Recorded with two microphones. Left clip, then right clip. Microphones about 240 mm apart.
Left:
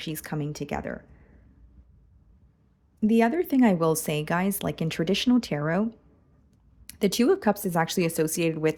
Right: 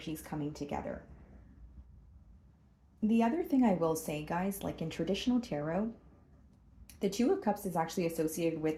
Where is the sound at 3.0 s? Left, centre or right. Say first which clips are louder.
Left 9 dB; left.